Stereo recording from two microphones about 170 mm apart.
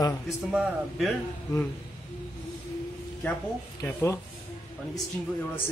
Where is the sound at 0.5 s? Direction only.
5° right (ahead or behind).